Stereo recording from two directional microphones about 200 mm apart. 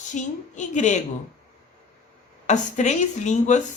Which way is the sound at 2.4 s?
35° left (ahead or behind).